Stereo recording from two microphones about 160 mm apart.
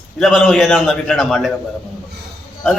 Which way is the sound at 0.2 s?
Centre (ahead or behind).